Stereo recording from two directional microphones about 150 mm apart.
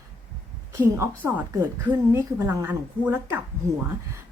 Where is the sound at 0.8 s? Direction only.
15° right (ahead or behind).